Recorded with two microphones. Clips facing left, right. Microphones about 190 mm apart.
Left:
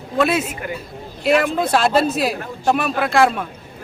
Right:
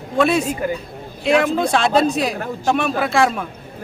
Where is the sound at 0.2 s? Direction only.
Centre (ahead or behind).